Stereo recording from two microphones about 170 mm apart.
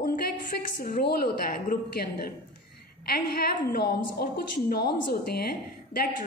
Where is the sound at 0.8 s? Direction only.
65° left (ahead or behind).